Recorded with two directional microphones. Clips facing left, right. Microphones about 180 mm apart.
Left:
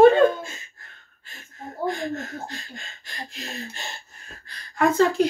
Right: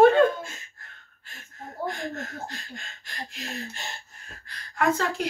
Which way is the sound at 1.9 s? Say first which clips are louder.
Left 6 dB; 25° left (ahead or behind).